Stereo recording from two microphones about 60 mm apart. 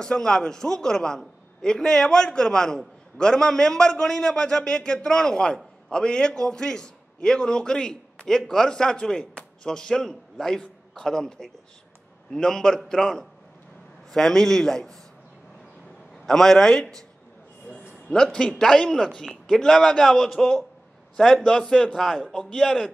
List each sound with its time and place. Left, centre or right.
0.0 s a man's voice: centre
16.3 s a man's voice: centre
17.6 s a sound: left
18.1 s a man's voice: centre